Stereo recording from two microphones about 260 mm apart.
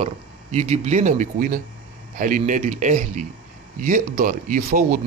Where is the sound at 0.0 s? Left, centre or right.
Right.